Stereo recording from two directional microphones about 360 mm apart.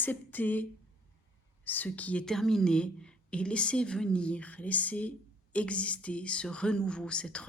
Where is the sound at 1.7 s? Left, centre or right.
Centre.